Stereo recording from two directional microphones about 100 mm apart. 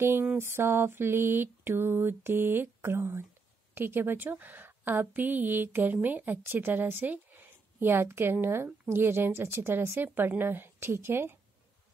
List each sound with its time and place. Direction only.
0.0 s a woman's voice: 25° right (ahead or behind)